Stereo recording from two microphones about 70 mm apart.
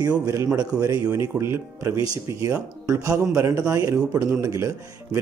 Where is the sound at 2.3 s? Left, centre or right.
Right.